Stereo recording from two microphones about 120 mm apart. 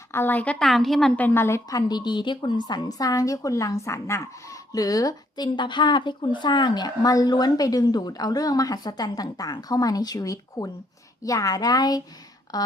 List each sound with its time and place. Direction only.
0.1 s a woman's voice: 20° left (ahead or behind)
0.6 s a woman's voice: centre (ahead or behind)
1.1 s a woman's voice: 15° left (ahead or behind)
1.9 s a woman's voice: 35° left (ahead or behind)